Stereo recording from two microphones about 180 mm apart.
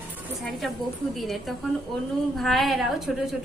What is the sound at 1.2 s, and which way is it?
A woman's voice, centre (ahead or behind).